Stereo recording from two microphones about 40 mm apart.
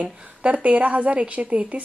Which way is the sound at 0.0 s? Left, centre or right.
Right.